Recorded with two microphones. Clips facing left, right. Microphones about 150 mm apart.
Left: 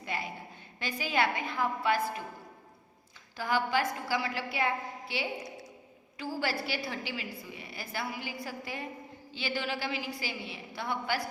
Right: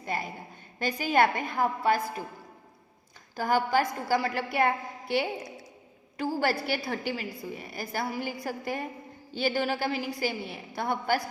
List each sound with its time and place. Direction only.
0.0 s a sound: 40° right (ahead or behind)
0.8 s a woman's voice: 45° right (ahead or behind)
3.3 s a woman's voice: 45° right (ahead or behind)